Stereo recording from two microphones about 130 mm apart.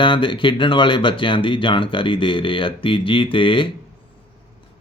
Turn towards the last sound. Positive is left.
turn(degrees=40)  # may be behind; listen again after turning